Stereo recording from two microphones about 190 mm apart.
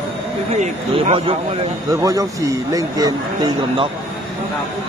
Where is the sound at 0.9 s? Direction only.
30° right (ahead or behind).